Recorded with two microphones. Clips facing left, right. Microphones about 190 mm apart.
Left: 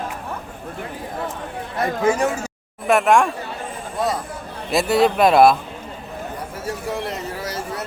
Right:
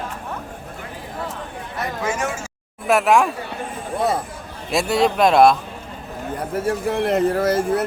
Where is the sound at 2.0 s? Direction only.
35° left (ahead or behind).